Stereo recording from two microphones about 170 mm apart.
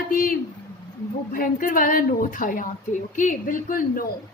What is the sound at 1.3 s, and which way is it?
A woman's voice, 55° left (ahead or behind).